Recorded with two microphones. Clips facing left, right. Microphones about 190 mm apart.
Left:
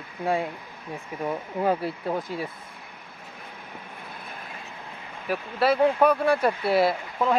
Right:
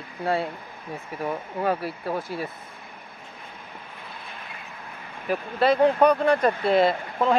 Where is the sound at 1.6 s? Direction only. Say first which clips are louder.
Left 1 dB; 25° left (ahead or behind).